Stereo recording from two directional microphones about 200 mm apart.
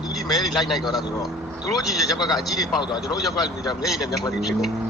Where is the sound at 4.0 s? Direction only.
20° left (ahead or behind).